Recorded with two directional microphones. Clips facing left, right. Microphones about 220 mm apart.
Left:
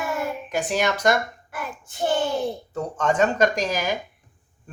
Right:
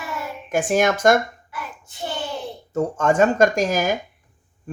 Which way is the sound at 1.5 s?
50° left (ahead or behind).